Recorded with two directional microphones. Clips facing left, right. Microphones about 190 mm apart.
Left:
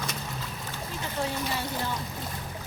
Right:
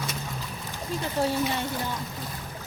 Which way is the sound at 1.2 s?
35° right (ahead or behind).